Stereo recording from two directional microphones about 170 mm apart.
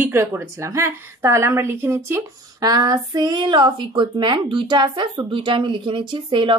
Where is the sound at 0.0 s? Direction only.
15° right (ahead or behind).